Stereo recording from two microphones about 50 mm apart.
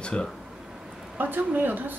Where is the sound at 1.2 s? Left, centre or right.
Right.